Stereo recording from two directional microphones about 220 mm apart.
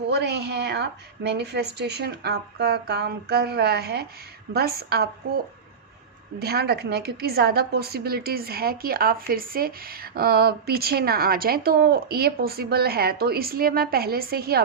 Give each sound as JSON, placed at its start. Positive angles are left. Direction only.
{"t": 0.1, "sound": "a woman's voice", "side_deg": -50}
{"t": 6.4, "sound": "a woman's voice", "side_deg": -45}